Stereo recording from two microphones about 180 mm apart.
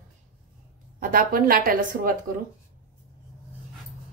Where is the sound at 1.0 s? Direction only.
50° right (ahead or behind).